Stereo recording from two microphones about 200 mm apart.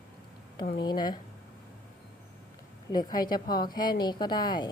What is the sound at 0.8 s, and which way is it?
Speech, 20° left (ahead or behind).